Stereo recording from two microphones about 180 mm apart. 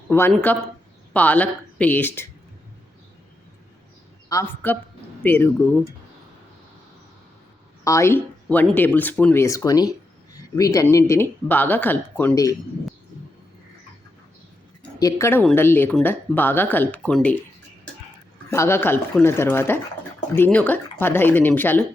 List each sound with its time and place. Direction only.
0.1 s speech: 10° left (ahead or behind)
4.3 s speech: 15° left (ahead or behind)
7.9 s speech: 15° left (ahead or behind)
14.9 s speech: 20° left (ahead or behind)
18.5 s speech: 15° left (ahead or behind)